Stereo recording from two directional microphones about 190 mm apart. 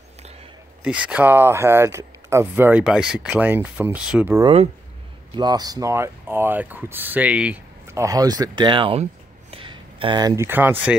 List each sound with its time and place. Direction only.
0.8 s speech: 5° right (ahead or behind)
4.4 s speech: 30° right (ahead or behind); by 11.0 s 10° right (ahead or behind)